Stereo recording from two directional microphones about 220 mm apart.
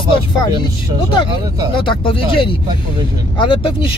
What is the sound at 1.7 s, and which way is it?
Speech, 25° left (ahead or behind).